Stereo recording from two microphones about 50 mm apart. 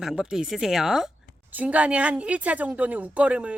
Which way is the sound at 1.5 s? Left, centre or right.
Right.